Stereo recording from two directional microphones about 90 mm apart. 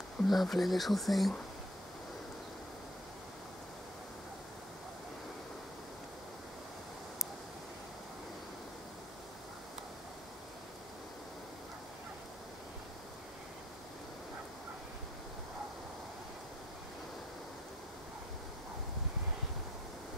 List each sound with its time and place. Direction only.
0.3 s speech: centre (ahead or behind)